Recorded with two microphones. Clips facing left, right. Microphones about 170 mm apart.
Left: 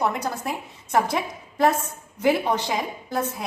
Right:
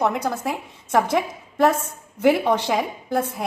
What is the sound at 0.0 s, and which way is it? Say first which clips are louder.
A woman's voice: right 3 dB; 55° right (ahead or behind).